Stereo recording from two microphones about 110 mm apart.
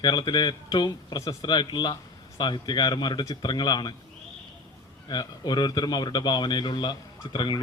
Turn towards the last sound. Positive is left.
turn(degrees=45)  # may be behind; listen again after turning